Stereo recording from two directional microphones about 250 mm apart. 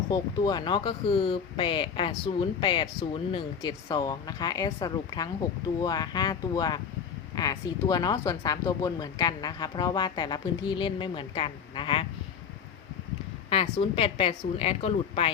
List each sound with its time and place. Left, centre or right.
0.1 s speech: centre
13.5 s speech: left